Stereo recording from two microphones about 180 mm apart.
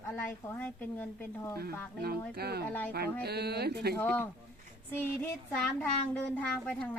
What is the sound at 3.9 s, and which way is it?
A woman's voice, 10° left (ahead or behind).